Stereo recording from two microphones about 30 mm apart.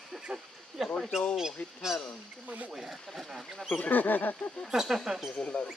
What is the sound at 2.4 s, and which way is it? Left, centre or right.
Speech, right.